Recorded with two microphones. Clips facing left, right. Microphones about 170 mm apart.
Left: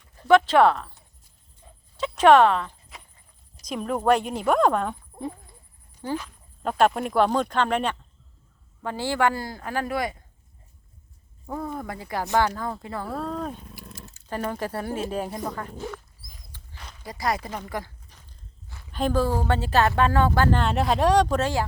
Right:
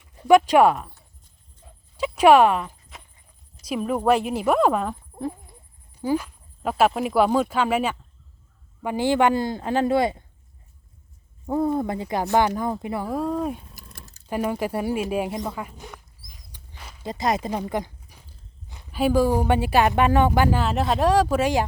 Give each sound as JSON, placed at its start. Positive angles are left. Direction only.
{"t": 0.2, "sound": "speech", "side_deg": -15}
{"t": 2.0, "sound": "speech", "side_deg": -10}
{"t": 11.4, "sound": "speech", "side_deg": -25}
{"t": 13.8, "sound": "a sound", "side_deg": -45}
{"t": 14.3, "sound": "speech", "side_deg": -10}
{"t": 16.5, "sound": "dog", "side_deg": -5}
{"t": 17.0, "sound": "walk", "side_deg": -20}
{"t": 18.9, "sound": "speech", "side_deg": -10}